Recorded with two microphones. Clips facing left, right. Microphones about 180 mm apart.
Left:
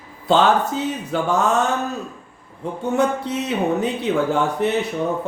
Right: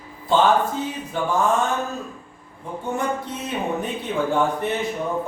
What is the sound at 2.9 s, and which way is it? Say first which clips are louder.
A man's voice: left 7 dB; 75° left (ahead or behind).